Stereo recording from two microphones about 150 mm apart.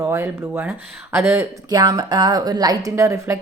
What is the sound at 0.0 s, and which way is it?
Speech, 15° right (ahead or behind).